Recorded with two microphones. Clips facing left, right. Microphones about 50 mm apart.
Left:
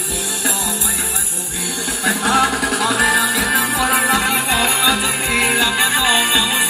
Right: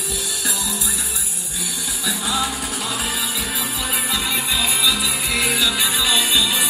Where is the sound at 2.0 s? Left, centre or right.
Left.